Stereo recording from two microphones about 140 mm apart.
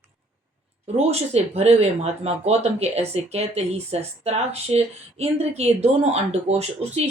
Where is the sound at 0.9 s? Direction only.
50° right (ahead or behind).